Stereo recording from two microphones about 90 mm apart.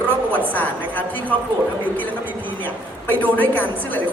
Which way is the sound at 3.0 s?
20° left (ahead or behind).